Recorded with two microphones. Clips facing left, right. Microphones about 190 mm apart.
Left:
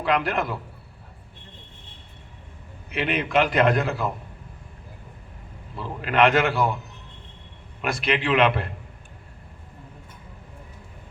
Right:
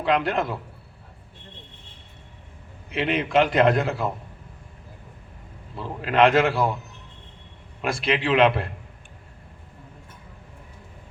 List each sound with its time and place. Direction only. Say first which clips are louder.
0.0 s a man's voice: right 1 dB; 25° right (ahead or behind)
2.9 s a man's voice: right 1 dB; 30° right (ahead or behind)
5.7 s a man's voice: right 1 dB; 30° right (ahead or behind)
7.8 s a man's voice: right 1 dB; 25° right (ahead or behind)